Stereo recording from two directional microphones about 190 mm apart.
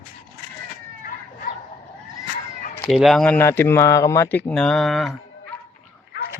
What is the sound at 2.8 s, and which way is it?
Speech, centre (ahead or behind).